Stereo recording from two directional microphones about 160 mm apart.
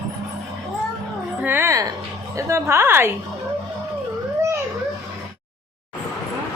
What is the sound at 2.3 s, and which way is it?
Speech, 15° right (ahead or behind).